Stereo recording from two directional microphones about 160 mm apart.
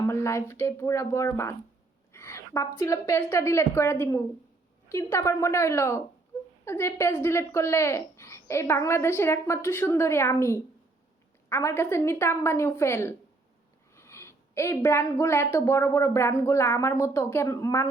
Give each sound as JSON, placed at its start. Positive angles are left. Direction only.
{"t": 0.0, "sound": "a woman's voice", "side_deg": 15}
{"t": 2.1, "sound": "a sound", "side_deg": 15}
{"t": 2.7, "sound": "a woman's voice", "side_deg": 20}